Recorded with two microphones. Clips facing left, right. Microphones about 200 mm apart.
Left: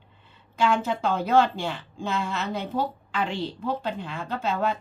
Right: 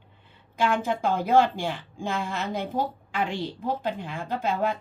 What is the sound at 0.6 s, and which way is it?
Speech, 50° right (ahead or behind).